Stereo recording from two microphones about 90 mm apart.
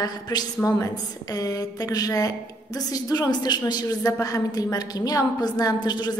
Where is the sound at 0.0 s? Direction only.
50° left (ahead or behind).